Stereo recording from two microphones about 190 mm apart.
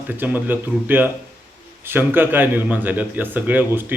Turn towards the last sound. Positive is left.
turn(degrees=-10)  # may be behind; listen again after turning